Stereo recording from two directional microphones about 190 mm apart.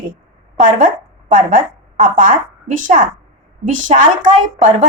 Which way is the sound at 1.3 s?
45° right (ahead or behind).